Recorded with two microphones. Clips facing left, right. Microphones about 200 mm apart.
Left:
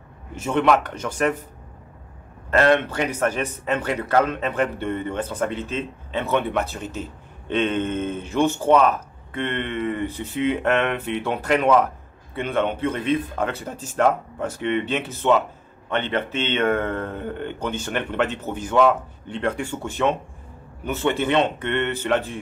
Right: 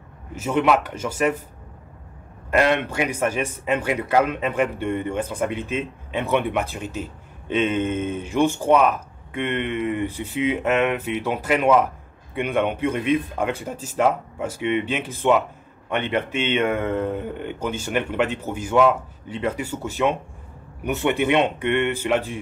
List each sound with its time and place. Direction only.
0.3 s a man's voice: 5° right (ahead or behind)
2.5 s a man's voice: 10° right (ahead or behind)